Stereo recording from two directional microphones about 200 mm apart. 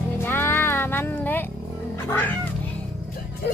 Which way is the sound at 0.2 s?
10° left (ahead or behind).